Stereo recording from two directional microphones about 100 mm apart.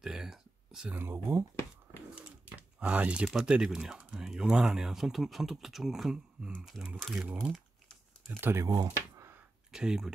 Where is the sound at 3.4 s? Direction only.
10° right (ahead or behind).